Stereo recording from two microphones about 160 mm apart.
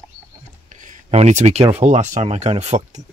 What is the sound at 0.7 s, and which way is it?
Speech, 50° right (ahead or behind).